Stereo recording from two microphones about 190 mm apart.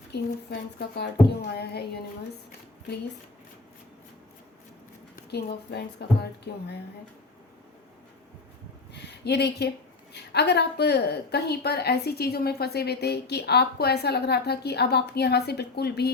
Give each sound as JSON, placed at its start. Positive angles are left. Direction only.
{"t": 0.1, "sound": "a woman's voice", "side_deg": 60}
{"t": 5.1, "sound": "a woman's voice", "side_deg": 55}
{"t": 8.9, "sound": "a woman's voice", "side_deg": 60}